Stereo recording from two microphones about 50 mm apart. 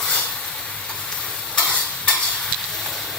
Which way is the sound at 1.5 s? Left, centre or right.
Left.